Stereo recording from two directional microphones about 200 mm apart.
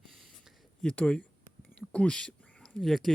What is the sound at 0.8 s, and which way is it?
Speech, 5° left (ahead or behind).